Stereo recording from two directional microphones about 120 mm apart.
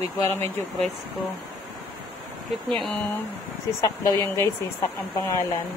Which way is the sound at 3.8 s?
30° left (ahead or behind).